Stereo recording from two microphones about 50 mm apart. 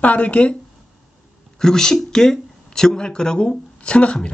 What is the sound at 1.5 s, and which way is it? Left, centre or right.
Speech, centre.